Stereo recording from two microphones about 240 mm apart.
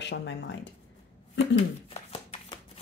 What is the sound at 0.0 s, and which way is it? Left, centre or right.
Speech, left.